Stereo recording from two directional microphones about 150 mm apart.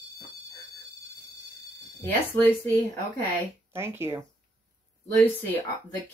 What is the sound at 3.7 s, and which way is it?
Speech, 15° right (ahead or behind).